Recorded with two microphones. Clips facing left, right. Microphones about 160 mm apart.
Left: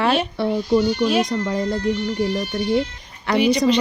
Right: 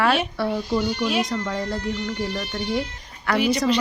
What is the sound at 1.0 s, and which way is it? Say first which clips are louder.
Speech: left 5 dB; 40° left (ahead or behind).